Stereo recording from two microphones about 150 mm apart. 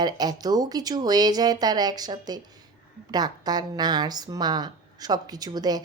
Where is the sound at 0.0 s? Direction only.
25° right (ahead or behind).